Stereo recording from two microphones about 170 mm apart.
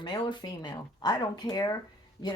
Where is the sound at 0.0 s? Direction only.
25° left (ahead or behind).